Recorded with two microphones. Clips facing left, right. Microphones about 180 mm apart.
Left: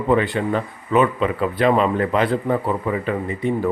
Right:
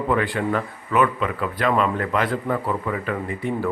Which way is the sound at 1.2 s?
35° left (ahead or behind).